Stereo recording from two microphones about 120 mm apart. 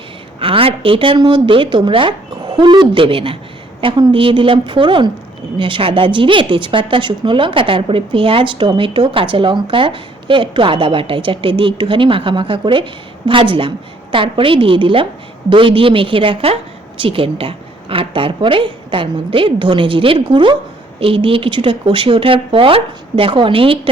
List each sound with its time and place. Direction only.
0.3 s a woman's voice: 50° right (ahead or behind)